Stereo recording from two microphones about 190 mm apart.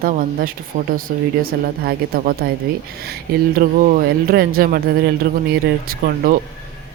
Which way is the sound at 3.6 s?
45° right (ahead or behind).